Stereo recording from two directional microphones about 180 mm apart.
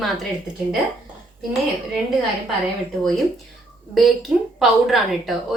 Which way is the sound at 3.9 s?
Centre (ahead or behind).